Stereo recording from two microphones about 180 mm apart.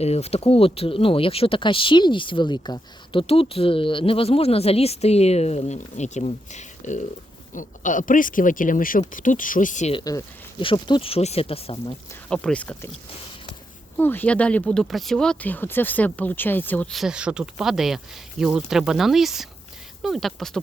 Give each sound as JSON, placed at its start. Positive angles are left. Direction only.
{"t": 0.0, "sound": "speech", "side_deg": 35}
{"t": 9.9, "sound": "speech", "side_deg": 20}
{"t": 12.3, "sound": "speech", "side_deg": 5}
{"t": 13.9, "sound": "speech", "side_deg": 10}